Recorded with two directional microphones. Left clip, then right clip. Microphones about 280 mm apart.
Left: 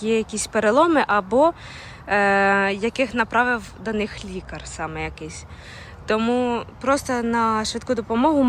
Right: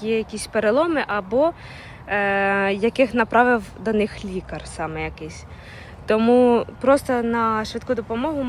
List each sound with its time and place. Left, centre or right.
0.0 s speech: centre